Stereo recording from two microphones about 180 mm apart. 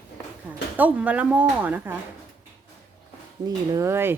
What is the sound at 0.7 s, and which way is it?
A woman's voice, 10° right (ahead or behind).